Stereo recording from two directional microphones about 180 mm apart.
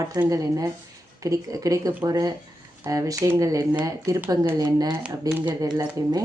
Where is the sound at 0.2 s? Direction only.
20° right (ahead or behind).